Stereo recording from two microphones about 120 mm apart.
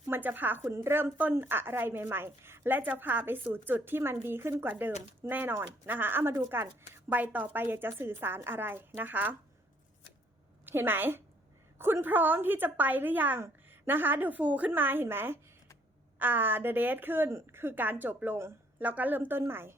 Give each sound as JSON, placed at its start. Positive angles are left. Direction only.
{"t": 0.1, "sound": "a woman's voice", "side_deg": -15}
{"t": 10.7, "sound": "a woman's voice", "side_deg": -15}